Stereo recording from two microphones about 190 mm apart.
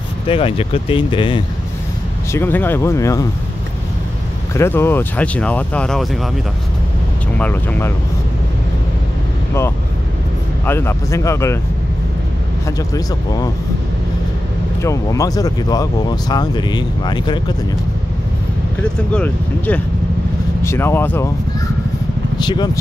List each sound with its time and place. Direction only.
0.3 s speech: 30° left (ahead or behind)
2.3 s speech: 10° left (ahead or behind)
4.6 s speech: 10° left (ahead or behind)
7.3 s speech: 10° left (ahead or behind)
10.6 s speech: 10° left (ahead or behind)
12.9 s speech: 20° left (ahead or behind)
14.8 s speech: 15° left (ahead or behind)
18.8 s speech: 5° left (ahead or behind)
22.4 s speech: 25° left (ahead or behind)